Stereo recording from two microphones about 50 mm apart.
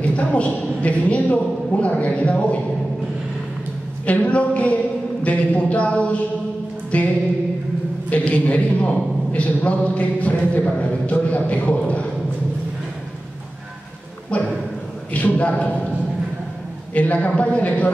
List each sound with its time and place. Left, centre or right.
0.0 s a man's voice: left
4.0 s a man's voice: left
14.3 s a man's voice: left
16.9 s a man's voice: left